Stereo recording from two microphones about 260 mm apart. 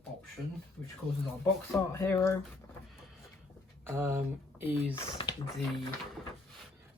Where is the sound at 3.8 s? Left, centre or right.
Centre.